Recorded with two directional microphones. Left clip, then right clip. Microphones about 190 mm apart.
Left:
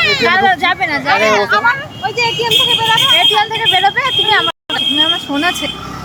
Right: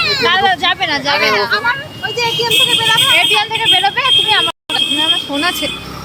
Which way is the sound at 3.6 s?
15° left (ahead or behind).